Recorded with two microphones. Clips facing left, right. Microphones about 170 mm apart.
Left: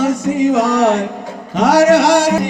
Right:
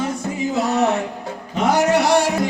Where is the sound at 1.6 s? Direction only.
90° left.